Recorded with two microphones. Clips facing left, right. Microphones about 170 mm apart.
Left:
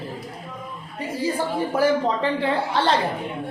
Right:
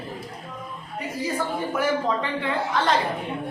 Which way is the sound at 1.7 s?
30° left (ahead or behind).